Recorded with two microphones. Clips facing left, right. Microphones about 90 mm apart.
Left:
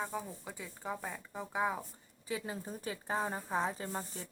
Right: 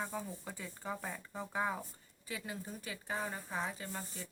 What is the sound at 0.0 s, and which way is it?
Speech, 10° left (ahead or behind).